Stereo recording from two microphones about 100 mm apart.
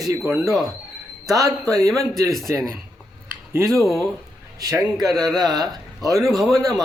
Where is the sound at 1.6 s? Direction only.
35° right (ahead or behind).